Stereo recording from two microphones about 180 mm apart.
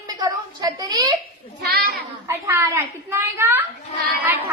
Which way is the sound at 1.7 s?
60° right (ahead or behind).